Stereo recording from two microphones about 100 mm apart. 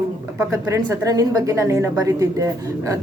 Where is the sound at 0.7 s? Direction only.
35° right (ahead or behind).